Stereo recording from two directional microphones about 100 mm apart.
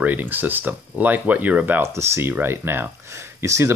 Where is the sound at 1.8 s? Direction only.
25° right (ahead or behind).